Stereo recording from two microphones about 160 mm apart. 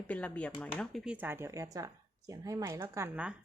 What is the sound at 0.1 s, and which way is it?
Speech, 10° left (ahead or behind).